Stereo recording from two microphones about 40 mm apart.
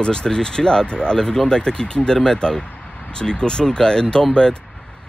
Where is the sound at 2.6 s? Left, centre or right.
Left.